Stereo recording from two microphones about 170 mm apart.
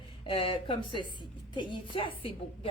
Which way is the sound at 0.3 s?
30° left (ahead or behind).